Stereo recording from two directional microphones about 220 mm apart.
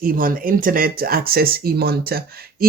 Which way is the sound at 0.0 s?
40° right (ahead or behind).